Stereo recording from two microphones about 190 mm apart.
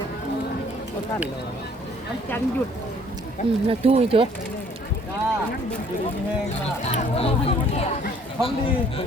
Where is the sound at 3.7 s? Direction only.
30° right (ahead or behind).